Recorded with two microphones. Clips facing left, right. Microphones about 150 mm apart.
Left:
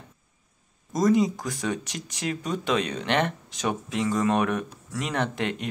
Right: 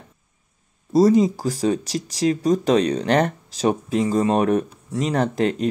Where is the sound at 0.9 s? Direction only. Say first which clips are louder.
Right 6 dB; 35° right (ahead or behind).